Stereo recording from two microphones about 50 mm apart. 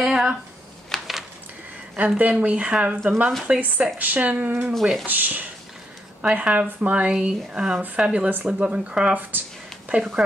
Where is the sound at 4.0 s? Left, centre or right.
Right.